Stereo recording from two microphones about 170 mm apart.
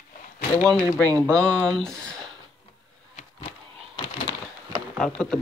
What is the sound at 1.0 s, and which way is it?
Speech, 20° right (ahead or behind).